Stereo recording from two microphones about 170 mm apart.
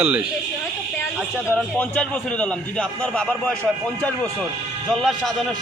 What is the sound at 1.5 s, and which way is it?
A man's voice, 10° left (ahead or behind).